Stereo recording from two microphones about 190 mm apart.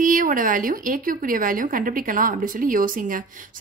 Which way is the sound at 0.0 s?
45° right (ahead or behind).